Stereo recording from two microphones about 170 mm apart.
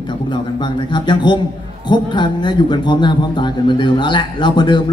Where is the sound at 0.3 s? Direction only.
25° left (ahead or behind).